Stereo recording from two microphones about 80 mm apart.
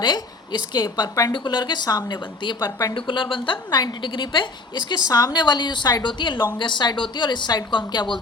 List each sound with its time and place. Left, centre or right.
0.0 s a woman's voice: left
2.9 s a woman's voice: left
5.0 s a woman's voice: left
6.6 s speech: left